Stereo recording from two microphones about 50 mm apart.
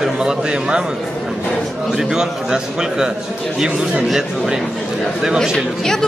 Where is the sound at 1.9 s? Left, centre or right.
Centre.